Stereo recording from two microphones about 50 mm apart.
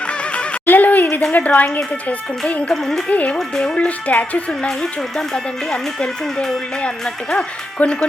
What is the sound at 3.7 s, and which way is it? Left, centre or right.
Speech, left.